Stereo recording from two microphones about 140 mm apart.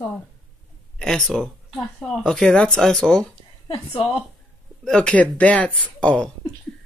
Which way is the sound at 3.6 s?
35° left (ahead or behind).